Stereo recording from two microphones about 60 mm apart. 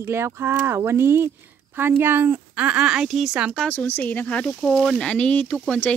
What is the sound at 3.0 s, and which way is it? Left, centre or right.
Speech, centre.